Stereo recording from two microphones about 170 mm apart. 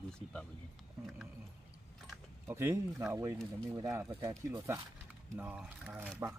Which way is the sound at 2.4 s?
15° right (ahead or behind).